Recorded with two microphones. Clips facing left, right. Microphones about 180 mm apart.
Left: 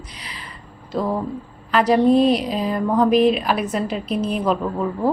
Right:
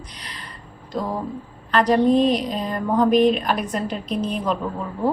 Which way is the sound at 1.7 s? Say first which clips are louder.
Left 2 dB; 5° left (ahead or behind).